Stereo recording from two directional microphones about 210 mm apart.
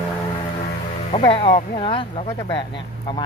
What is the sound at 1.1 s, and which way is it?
Speech, 25° left (ahead or behind).